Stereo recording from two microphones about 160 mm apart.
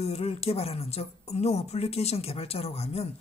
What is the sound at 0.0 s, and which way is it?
A woman's voice, 40° left (ahead or behind).